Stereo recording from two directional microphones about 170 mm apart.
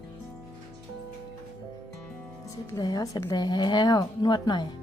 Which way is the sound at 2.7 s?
20° left (ahead or behind).